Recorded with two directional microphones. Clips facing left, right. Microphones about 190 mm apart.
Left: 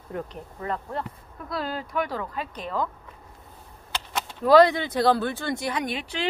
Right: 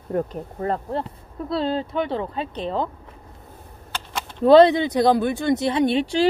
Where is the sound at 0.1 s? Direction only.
40° right (ahead or behind).